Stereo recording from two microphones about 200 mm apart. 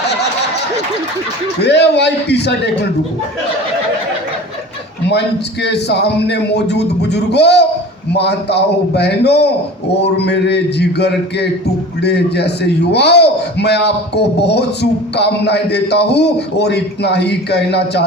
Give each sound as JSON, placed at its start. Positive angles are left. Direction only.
{"t": 1.6, "sound": "a man's voice", "side_deg": 55}
{"t": 5.6, "sound": "a man's voice", "side_deg": 55}
{"t": 12.9, "sound": "a man's voice", "side_deg": 55}